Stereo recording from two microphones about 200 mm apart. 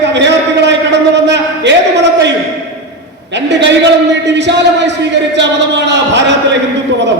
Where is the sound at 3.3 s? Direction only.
60° right (ahead or behind).